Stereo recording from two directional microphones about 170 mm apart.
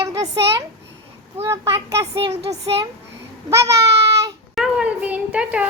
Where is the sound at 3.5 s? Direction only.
20° right (ahead or behind).